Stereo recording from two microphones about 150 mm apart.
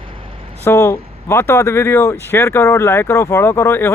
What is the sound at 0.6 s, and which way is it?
Speech, 20° left (ahead or behind).